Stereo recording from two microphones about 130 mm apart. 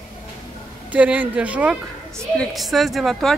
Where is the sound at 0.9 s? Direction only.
10° right (ahead or behind).